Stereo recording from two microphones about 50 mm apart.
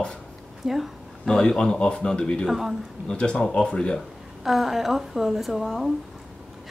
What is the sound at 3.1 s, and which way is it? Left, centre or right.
Speech, centre.